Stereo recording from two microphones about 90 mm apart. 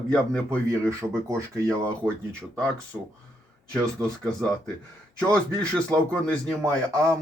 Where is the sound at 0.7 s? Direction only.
35° right (ahead or behind).